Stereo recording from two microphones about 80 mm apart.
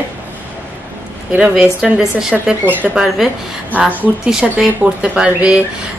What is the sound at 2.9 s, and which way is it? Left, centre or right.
Speech, centre.